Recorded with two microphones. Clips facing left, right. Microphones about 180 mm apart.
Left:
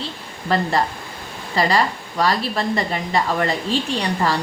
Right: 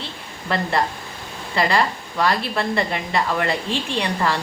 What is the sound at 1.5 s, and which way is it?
A woman's voice, 35° left (ahead or behind).